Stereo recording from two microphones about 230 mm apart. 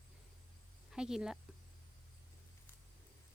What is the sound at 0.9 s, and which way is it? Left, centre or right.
Speech, centre.